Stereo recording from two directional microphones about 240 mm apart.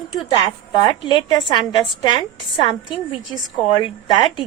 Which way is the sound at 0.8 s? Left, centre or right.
Centre.